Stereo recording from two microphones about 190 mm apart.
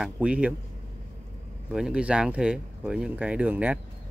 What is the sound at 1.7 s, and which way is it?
Speech, 5° right (ahead or behind).